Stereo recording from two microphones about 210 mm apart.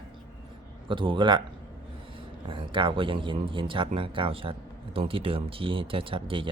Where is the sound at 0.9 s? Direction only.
25° right (ahead or behind).